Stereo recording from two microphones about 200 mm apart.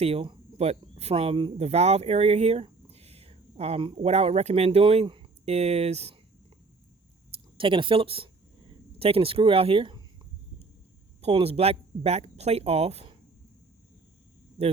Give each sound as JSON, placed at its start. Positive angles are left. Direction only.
{"t": 0.0, "sound": "speech", "side_deg": -30}
{"t": 7.6, "sound": "speech", "side_deg": -25}
{"t": 11.2, "sound": "speech", "side_deg": -30}